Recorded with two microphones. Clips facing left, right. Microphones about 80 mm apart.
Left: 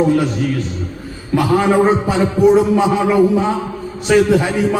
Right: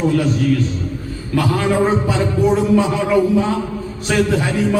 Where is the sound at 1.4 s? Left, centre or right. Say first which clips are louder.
Left 3 dB; centre.